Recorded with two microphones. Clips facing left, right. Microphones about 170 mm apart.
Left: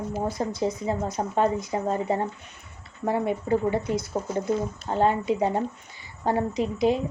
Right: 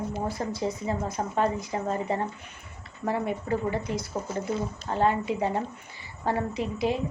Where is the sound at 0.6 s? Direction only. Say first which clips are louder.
Left 3 dB; 30° left (ahead or behind).